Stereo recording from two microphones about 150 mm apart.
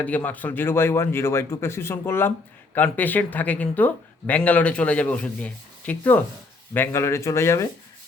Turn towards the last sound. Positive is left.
turn(degrees=20)  # may be behind; listen again after turning